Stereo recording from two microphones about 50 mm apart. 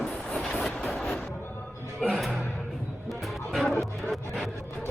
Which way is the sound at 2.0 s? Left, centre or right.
Centre.